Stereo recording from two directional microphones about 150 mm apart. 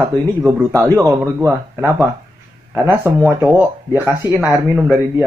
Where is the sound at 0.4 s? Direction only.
15° right (ahead or behind).